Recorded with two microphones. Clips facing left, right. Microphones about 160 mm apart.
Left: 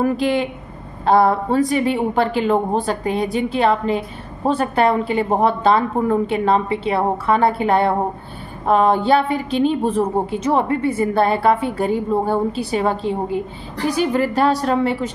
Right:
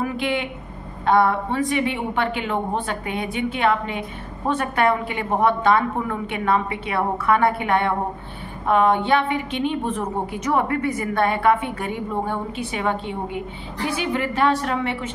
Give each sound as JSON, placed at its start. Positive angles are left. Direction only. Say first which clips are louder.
{"t": 0.0, "sound": "a woman's voice", "louder": "left 6 dB", "side_deg": 35}